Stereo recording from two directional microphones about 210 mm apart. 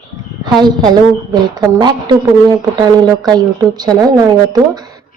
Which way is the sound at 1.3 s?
20° right (ahead or behind).